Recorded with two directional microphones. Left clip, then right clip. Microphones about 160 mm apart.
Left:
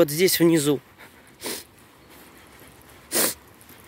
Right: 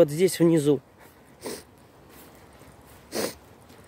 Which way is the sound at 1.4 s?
10° right (ahead or behind).